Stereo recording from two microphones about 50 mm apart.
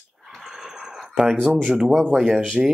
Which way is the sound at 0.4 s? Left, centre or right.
Centre.